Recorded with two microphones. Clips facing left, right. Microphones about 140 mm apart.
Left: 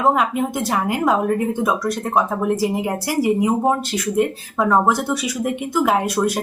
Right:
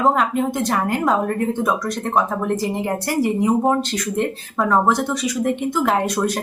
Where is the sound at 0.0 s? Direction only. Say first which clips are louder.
Even; 5° left (ahead or behind).